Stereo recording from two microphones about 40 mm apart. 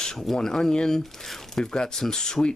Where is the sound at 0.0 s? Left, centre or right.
Centre.